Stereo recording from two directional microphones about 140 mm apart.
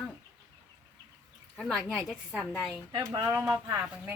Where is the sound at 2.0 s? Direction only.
Centre (ahead or behind).